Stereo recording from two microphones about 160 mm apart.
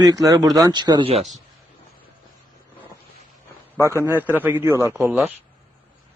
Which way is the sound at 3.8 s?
15° right (ahead or behind).